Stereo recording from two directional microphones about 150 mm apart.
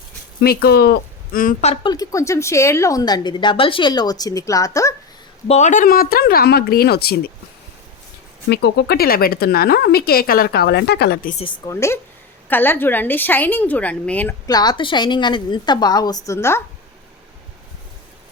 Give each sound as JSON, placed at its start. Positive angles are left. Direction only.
{"t": 0.4, "sound": "speech", "side_deg": 90}
{"t": 1.6, "sound": "a woman's voice", "side_deg": 40}
{"t": 1.9, "sound": "a woman's voice", "side_deg": 20}
{"t": 5.5, "sound": "a woman's voice", "side_deg": 50}
{"t": 8.4, "sound": "speech", "side_deg": 90}
{"t": 11.6, "sound": "a woman's voice", "side_deg": 20}
{"t": 14.4, "sound": "a woman's voice", "side_deg": 25}